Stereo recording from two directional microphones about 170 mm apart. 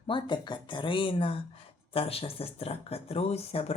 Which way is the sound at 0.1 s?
25° left (ahead or behind).